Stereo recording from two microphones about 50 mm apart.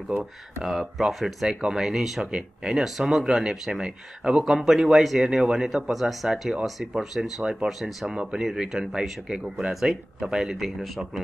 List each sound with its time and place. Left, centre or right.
0.2 s speech: centre